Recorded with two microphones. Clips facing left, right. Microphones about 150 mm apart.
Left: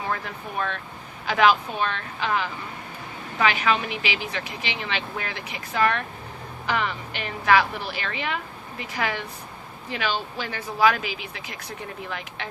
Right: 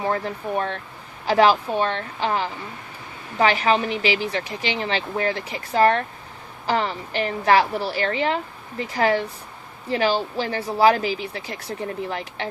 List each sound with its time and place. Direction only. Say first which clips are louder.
0.1 s speech: right 6 dB; 30° right (ahead or behind)